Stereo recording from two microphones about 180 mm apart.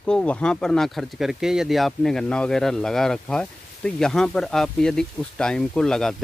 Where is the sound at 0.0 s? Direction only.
5° left (ahead or behind).